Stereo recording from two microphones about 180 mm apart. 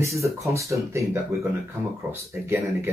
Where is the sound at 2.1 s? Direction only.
15° right (ahead or behind).